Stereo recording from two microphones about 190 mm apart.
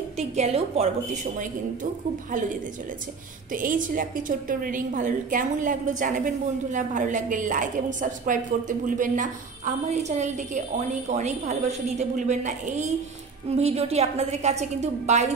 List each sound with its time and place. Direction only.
0.2 s a woman's voice: 35° right (ahead or behind)
3.5 s a woman's voice: 45° right (ahead or behind)